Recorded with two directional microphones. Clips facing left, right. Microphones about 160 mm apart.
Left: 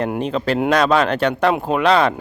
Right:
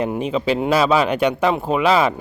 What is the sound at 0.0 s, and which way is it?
Speech, 5° right (ahead or behind).